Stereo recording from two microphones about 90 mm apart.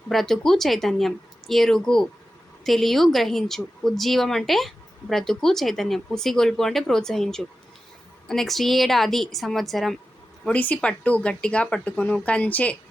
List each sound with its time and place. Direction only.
0.1 s speech: 5° left (ahead or behind)
10.4 s speech: 15° left (ahead or behind)